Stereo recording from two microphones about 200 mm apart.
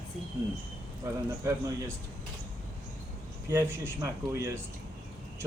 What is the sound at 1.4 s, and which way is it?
Speech, 15° right (ahead or behind).